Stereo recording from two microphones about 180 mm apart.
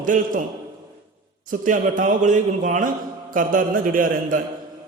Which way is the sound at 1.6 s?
45° right (ahead or behind).